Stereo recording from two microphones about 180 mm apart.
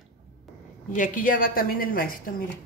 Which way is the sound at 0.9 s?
45° left (ahead or behind).